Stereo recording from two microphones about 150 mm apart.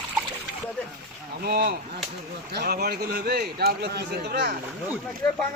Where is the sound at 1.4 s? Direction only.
90° right.